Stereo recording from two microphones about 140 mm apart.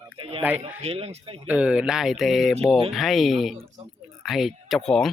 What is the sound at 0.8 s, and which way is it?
Speech, 45° right (ahead or behind).